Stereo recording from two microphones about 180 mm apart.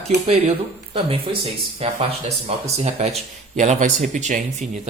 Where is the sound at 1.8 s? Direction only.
30° right (ahead or behind).